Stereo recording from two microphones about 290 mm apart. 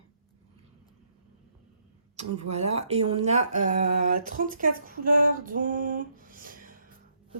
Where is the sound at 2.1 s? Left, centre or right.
Right.